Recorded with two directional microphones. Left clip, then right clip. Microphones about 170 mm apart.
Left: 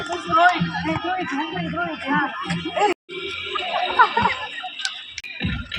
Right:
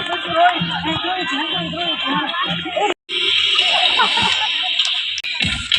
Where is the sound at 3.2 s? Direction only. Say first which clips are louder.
Right 12 dB; 55° left (ahead or behind).